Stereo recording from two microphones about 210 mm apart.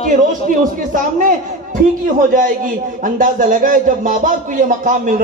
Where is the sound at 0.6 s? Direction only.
40° right (ahead or behind).